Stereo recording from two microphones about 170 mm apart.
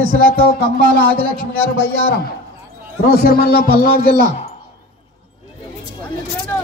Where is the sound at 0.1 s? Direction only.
60° left (ahead or behind).